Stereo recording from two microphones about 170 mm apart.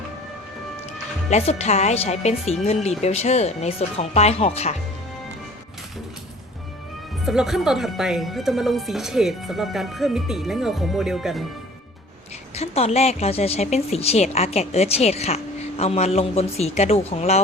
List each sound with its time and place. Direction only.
1.3 s a woman's voice: 40° left (ahead or behind)
7.3 s speech: centre (ahead or behind)
12.5 s a woman's voice: 35° left (ahead or behind)